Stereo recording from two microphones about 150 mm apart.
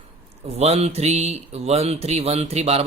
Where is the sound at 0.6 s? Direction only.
45° right (ahead or behind).